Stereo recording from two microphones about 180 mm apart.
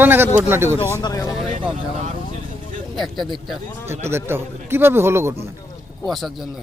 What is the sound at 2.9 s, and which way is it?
Speech, centre (ahead or behind).